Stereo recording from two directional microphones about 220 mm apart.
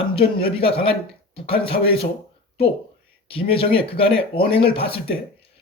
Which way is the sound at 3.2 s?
25° left (ahead or behind).